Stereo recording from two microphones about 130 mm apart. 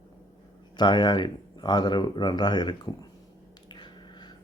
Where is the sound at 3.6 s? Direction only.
35° left (ahead or behind).